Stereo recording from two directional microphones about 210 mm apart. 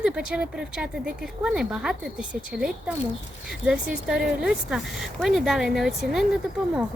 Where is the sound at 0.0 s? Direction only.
5° right (ahead or behind).